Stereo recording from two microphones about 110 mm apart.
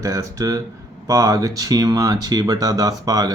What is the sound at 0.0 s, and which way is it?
Speech, 30° right (ahead or behind).